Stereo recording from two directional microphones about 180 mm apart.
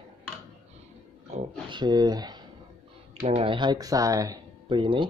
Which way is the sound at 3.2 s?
45° right (ahead or behind).